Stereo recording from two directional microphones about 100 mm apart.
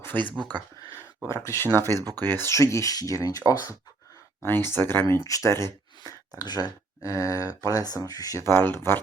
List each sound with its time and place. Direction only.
0.1 s speech: 20° left (ahead or behind)
1.9 s speech: 40° right (ahead or behind)
2.4 s speech: 30° left (ahead or behind)
4.4 s speech: 20° left (ahead or behind)